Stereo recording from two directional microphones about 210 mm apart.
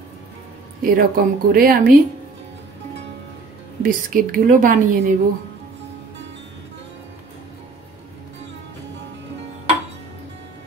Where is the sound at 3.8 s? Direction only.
40° right (ahead or behind).